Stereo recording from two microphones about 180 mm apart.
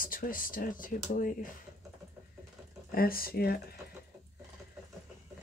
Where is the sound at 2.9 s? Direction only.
55° left (ahead or behind).